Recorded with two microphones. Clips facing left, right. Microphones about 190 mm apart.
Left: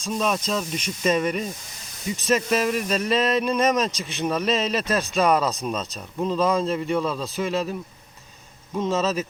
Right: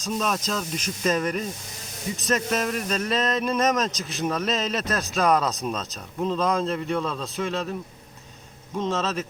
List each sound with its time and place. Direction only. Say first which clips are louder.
0.1 s speech: left 2 dB; centre (ahead or behind)
8.8 s speech: left 3 dB; 5° left (ahead or behind)